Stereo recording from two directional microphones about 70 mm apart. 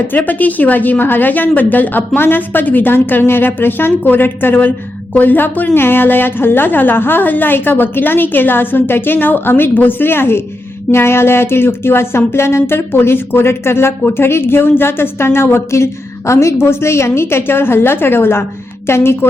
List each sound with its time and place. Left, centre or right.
0.2 s a woman's voice: left